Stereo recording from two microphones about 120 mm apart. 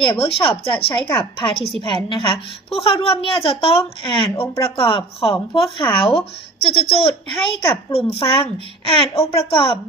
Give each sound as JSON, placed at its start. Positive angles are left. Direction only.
{"t": 0.0, "sound": "speech", "side_deg": 50}